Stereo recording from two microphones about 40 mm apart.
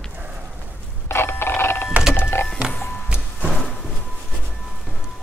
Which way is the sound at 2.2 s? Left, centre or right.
Left.